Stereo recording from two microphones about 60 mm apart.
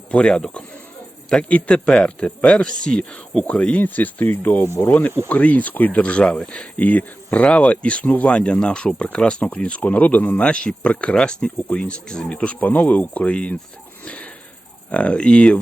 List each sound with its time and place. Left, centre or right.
0.1 s speech: centre
1.5 s speech: left
1.7 s speech: centre
3.8 s speech: left
4.8 s speech: left
5.3 s speech: left
10.4 s speech: centre
14.0 s a sound: centre
14.8 s speech: centre